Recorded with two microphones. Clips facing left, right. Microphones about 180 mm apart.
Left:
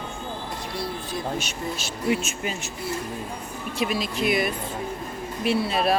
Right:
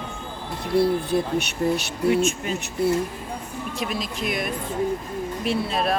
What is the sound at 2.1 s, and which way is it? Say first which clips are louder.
Speech: right 4 dB; 5° left (ahead or behind).